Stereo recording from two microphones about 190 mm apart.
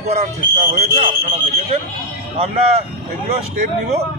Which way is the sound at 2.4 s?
35° right (ahead or behind).